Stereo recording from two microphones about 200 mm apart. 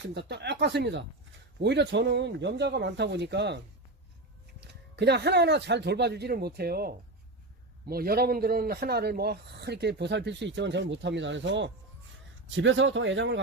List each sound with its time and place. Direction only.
0.0 s a man's voice: 60° right (ahead or behind)
4.6 s a man's voice: 55° right (ahead or behind)